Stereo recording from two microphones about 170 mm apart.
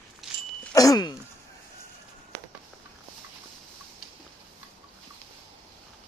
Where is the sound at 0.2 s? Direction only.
Centre (ahead or behind).